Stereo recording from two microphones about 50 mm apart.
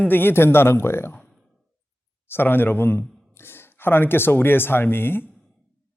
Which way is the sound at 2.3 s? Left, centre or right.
Left.